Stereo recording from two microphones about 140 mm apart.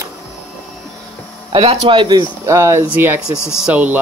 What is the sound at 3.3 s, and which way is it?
Speech, 20° left (ahead or behind).